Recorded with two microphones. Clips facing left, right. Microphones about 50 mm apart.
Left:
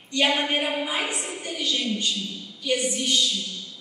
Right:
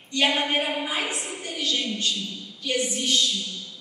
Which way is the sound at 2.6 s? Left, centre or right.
Centre.